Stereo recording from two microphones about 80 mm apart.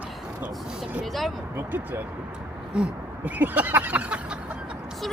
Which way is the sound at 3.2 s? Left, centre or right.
Right.